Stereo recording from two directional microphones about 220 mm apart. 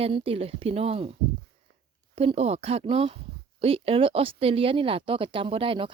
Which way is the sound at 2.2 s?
30° right (ahead or behind).